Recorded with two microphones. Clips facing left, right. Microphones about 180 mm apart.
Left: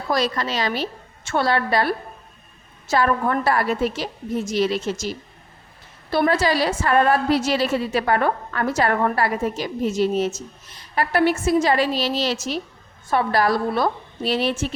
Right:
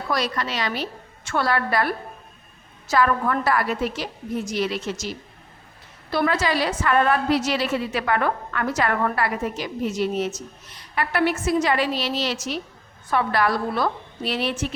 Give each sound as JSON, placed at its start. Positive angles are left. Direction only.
{"t": 0.2, "sound": "a woman's voice", "side_deg": 30}
{"t": 6.1, "sound": "a woman's voice", "side_deg": 30}
{"t": 10.9, "sound": "a woman's voice", "side_deg": 40}